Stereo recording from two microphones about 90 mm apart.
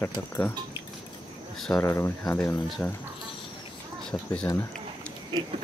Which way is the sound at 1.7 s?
25° left (ahead or behind).